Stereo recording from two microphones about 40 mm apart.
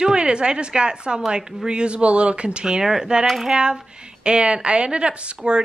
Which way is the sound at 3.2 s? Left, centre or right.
Centre.